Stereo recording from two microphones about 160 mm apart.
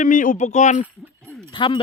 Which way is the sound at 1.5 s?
30° left (ahead or behind).